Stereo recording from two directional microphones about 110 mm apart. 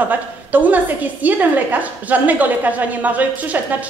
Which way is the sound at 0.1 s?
15° right (ahead or behind).